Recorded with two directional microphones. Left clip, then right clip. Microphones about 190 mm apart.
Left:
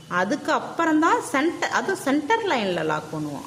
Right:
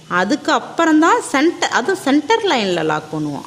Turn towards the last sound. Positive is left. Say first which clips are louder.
# right 7 dB
turn(degrees=-40)  # may be behind; listen again after turning